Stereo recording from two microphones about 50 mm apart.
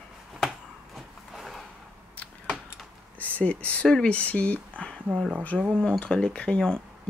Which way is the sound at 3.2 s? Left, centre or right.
Left.